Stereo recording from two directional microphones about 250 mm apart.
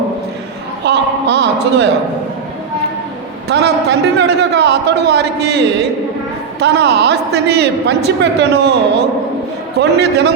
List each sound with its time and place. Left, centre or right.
0.9 s a sound: right
3.5 s a man's voice: right
9.7 s a man's voice: right